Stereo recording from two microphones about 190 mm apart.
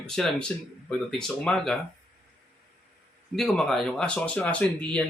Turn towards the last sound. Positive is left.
turn(degrees=5)  # may be behind; listen again after turning